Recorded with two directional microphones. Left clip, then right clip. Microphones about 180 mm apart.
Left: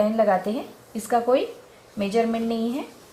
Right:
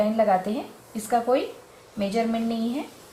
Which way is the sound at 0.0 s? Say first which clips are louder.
Left 1 dB; 30° left (ahead or behind).